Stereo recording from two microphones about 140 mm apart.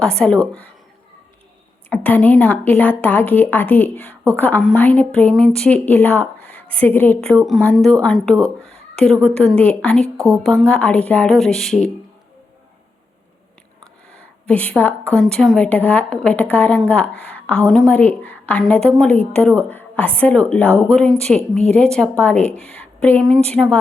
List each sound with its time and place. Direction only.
0.2 s a woman's voice: 5° left (ahead or behind)
2.0 s a woman's voice: 10° left (ahead or behind)
10.2 s speech: 25° right (ahead or behind)
10.4 s a woman's voice: 5° left (ahead or behind)
14.1 s a sound: 10° left (ahead or behind)
15.2 s a woman's voice: centre (ahead or behind)
17.7 s a woman's voice: centre (ahead or behind)
17.9 s a woman's voice: 10° left (ahead or behind)